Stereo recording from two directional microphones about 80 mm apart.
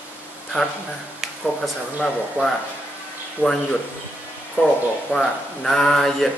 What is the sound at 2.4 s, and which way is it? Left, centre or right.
Speech, right.